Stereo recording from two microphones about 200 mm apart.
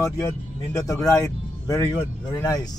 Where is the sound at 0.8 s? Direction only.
15° left (ahead or behind).